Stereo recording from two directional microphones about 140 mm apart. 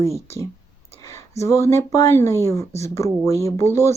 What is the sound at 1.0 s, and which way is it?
Speech, 20° left (ahead or behind).